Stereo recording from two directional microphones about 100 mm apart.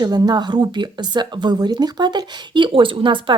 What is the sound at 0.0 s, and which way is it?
Speech, 40° right (ahead or behind).